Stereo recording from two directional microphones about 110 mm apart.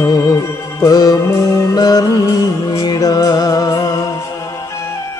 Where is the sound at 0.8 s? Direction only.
35° left (ahead or behind).